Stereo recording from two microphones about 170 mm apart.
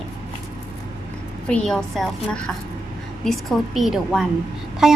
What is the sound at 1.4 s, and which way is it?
A woman's voice, 5° left (ahead or behind).